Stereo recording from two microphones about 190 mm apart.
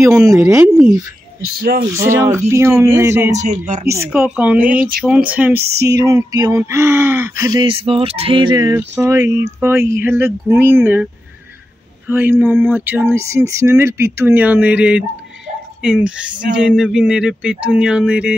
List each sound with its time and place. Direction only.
0.0 s speech: 15° right (ahead or behind)
0.5 s speech: 5° right (ahead or behind)
1.6 s speech: 50° right (ahead or behind)
2.0 s speech: 15° right (ahead or behind)
3.3 s speech: 40° right (ahead or behind)
3.8 s speech: 15° right (ahead or behind)
12.1 s speech: 10° right (ahead or behind)